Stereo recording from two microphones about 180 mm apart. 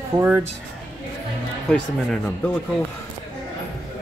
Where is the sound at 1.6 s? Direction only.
5° left (ahead or behind).